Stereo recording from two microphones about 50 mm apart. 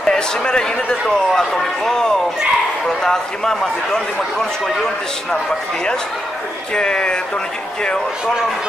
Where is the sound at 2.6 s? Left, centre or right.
Centre.